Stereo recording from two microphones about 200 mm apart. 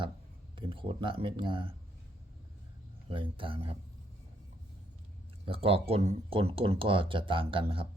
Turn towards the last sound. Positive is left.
turn(degrees=-25)  # may be behind; listen again after turning